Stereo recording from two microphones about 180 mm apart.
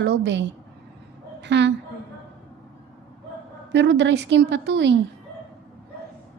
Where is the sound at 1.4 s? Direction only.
75° right (ahead or behind).